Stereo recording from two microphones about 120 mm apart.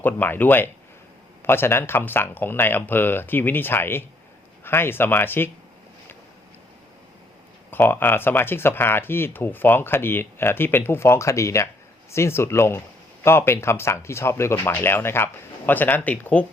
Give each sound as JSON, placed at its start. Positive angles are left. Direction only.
{"t": 0.0, "sound": "speech", "side_deg": 15}
{"t": 7.7, "sound": "speech", "side_deg": 15}